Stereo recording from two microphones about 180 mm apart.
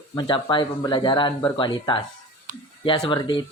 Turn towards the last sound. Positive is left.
turn(degrees=30)  # may be behind; listen again after turning